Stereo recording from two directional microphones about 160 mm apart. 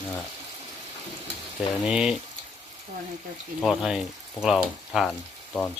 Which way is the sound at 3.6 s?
Centre (ahead or behind).